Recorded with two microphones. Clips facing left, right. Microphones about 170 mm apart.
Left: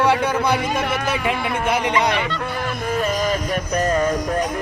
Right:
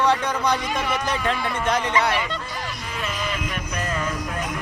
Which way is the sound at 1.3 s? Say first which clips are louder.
Left 3 dB; 50° left (ahead or behind).